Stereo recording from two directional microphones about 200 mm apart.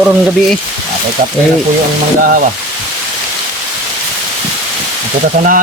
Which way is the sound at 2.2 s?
45° right (ahead or behind).